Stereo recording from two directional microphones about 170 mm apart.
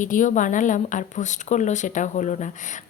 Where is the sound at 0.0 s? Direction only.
50° left (ahead or behind).